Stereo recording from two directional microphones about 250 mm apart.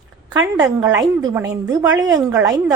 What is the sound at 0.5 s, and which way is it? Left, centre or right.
A woman's voice, centre.